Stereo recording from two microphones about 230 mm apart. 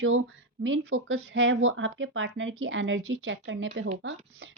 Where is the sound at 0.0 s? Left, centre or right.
Right.